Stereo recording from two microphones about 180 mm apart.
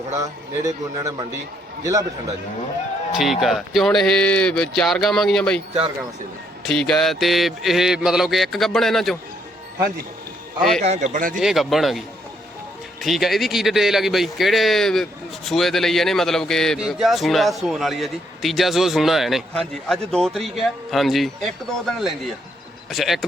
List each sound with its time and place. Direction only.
0.1 s a man's voice: 20° right (ahead or behind)
3.2 s a man's voice: centre (ahead or behind)
6.7 s a man's voice: centre (ahead or behind)
10.8 s a man's voice: 40° right (ahead or behind)
11.3 s a man's voice: centre (ahead or behind)